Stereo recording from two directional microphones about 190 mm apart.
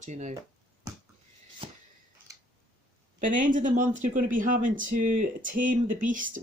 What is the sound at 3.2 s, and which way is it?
Speech, 45° right (ahead or behind).